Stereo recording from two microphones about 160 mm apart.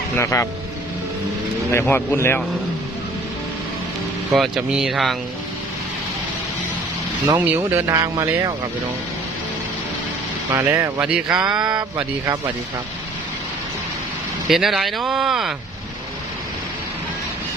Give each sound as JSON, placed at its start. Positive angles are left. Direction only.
{"t": 0.2, "sound": "speech", "side_deg": 20}
{"t": 1.9, "sound": "speech", "side_deg": 15}
{"t": 4.3, "sound": "speech", "side_deg": 0}
{"t": 7.3, "sound": "speech", "side_deg": -10}
{"t": 7.9, "sound": "speech", "side_deg": -20}
{"t": 10.5, "sound": "speech", "side_deg": -15}
{"t": 11.0, "sound": "speech", "side_deg": -5}
{"t": 11.7, "sound": "speech", "side_deg": -20}
{"t": 14.4, "sound": "speech", "side_deg": 0}